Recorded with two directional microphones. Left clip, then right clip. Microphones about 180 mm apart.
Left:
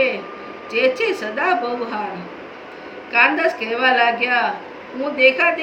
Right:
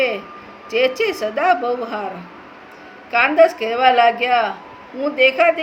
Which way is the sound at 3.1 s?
60° right (ahead or behind).